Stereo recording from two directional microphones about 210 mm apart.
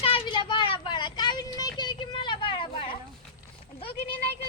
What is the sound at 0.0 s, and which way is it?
Child singing, 25° left (ahead or behind).